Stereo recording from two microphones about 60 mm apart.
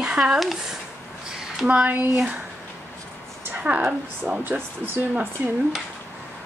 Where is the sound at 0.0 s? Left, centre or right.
Centre.